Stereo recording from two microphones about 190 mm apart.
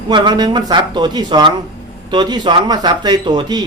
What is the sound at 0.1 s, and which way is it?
Speech, 20° right (ahead or behind).